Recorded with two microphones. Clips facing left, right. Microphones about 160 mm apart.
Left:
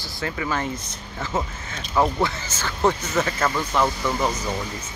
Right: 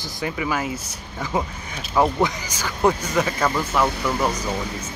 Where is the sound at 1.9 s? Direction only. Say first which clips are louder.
Right 2 dB; 15° right (ahead or behind).